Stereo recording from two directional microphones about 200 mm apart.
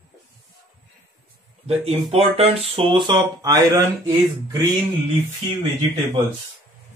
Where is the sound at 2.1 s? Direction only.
30° right (ahead or behind).